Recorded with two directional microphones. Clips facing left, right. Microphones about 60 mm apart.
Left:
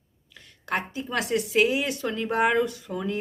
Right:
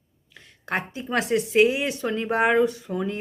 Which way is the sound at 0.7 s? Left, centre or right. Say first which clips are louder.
Right 2 dB; right.